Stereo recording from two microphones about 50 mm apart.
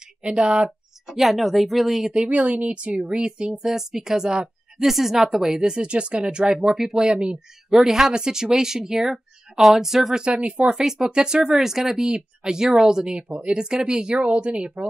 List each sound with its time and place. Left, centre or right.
0.2 s speech: centre
0.7 s speech: centre
2.2 s speech: right; by 10.2 s centre
10.2 s speech: right
10.7 s speech: centre
13.3 s speech: right
13.6 s speech: centre